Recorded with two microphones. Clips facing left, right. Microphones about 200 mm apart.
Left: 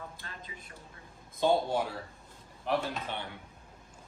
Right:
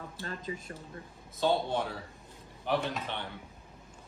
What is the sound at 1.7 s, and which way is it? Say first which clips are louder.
Speech: left 1 dB; 5° left (ahead or behind).